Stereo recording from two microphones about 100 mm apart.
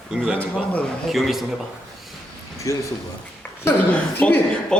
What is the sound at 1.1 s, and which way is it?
Speech, centre (ahead or behind).